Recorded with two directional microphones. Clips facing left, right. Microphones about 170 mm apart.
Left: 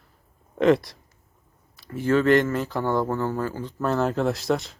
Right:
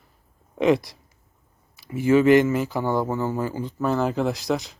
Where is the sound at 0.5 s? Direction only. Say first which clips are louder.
Left 1 dB; 5° right (ahead or behind).